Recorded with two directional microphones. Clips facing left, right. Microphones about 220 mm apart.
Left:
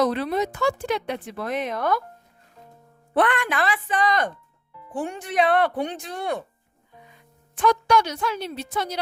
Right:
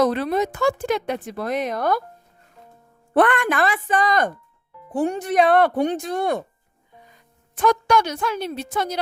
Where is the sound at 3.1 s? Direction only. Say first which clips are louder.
Right 4 dB; 50° right (ahead or behind).